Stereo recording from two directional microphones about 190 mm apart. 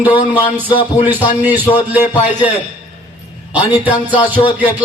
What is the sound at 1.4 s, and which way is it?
Speech, 10° right (ahead or behind).